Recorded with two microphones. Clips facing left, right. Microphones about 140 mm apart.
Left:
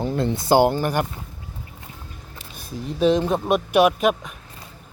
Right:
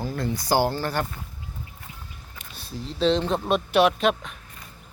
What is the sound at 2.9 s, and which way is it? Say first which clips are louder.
Speech: left 3 dB; 10° left (ahead or behind).